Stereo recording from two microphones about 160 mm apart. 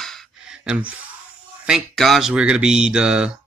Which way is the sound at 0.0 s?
Centre (ahead or behind).